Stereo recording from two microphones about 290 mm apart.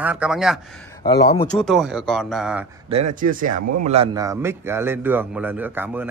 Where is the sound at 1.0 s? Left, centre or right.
Centre.